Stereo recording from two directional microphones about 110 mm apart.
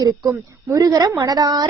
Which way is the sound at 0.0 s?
30° right (ahead or behind).